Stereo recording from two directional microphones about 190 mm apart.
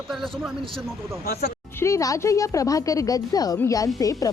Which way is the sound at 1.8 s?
15° left (ahead or behind).